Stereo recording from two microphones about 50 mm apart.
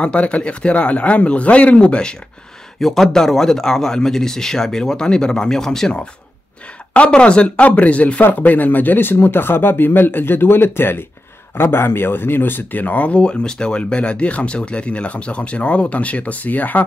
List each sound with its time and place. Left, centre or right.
0.0 s speech: left
2.8 s speech: centre
6.9 s speech: left